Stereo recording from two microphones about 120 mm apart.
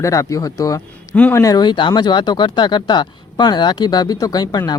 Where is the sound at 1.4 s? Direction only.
30° left (ahead or behind).